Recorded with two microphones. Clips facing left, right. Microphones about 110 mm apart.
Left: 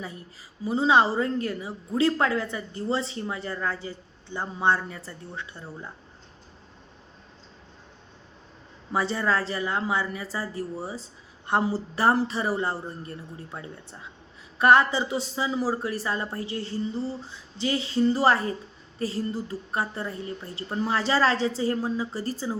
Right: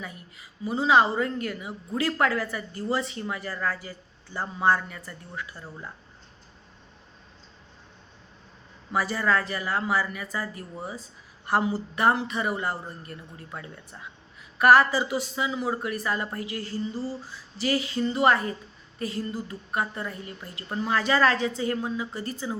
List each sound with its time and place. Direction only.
0.6 s a woman's voice: 30° left (ahead or behind)
8.9 s a woman's voice: 25° left (ahead or behind)